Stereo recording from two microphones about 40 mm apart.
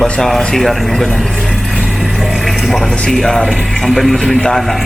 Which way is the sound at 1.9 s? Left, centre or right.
Centre.